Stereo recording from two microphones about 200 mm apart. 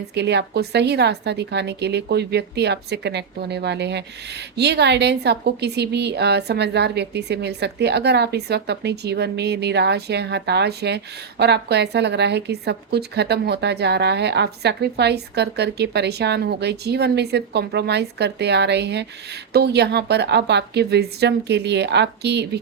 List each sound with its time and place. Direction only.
0.1 s a woman's voice: 60° right (ahead or behind)